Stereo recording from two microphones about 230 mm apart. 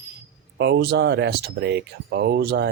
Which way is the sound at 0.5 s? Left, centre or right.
Right.